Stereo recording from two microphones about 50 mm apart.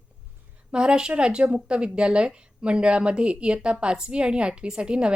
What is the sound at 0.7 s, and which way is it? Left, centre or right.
Speech, centre.